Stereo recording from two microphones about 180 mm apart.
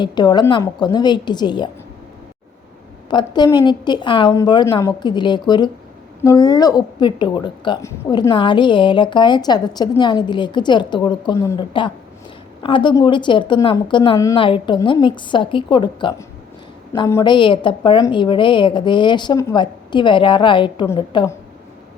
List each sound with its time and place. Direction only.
0.0 s a woman's voice: 25° left (ahead or behind)
3.1 s a woman's voice: 25° left (ahead or behind)
12.6 s a woman's voice: 25° left (ahead or behind)